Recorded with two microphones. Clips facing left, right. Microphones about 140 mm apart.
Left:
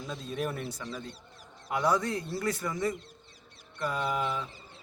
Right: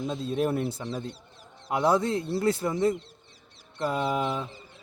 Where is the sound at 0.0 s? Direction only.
25° right (ahead or behind).